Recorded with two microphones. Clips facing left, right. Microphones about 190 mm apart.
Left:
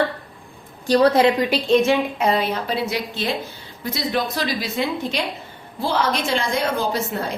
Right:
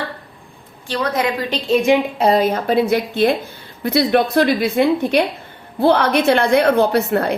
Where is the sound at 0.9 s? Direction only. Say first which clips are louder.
Left 5 dB; 35° left (ahead or behind).